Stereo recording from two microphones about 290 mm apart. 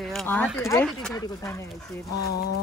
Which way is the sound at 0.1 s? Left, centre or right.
Centre.